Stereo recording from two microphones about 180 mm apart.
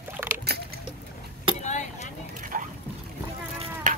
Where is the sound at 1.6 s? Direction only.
40° left (ahead or behind).